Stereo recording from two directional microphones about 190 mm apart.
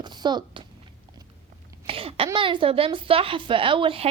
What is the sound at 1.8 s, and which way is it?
Cough, 30° right (ahead or behind).